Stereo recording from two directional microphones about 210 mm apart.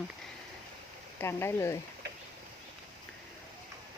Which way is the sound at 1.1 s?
10° left (ahead or behind).